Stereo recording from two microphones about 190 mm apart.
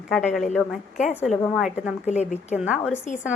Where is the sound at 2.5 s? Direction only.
5° right (ahead or behind).